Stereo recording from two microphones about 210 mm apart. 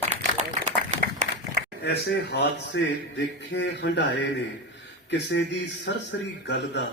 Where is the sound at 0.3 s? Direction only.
35° right (ahead or behind).